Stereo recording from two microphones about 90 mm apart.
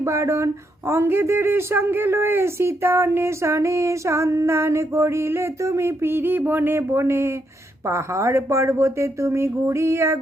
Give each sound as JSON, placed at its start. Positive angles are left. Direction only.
{"t": 0.0, "sound": "speech", "side_deg": -35}